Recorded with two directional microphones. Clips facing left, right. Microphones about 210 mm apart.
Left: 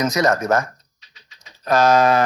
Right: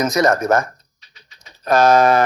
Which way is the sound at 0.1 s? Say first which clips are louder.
Right 2 dB; 50° right (ahead or behind).